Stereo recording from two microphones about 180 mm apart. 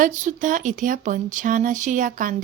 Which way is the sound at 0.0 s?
45° right (ahead or behind).